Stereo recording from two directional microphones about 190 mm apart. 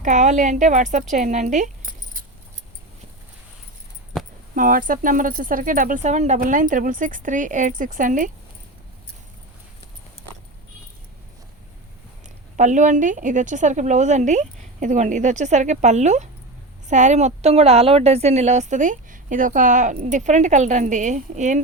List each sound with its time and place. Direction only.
0.0 s a woman's voice: 40° right (ahead or behind)
1.1 s keys jangling: 40° right (ahead or behind)
4.5 s speech: 45° right (ahead or behind)
12.5 s a woman's voice: 40° right (ahead or behind)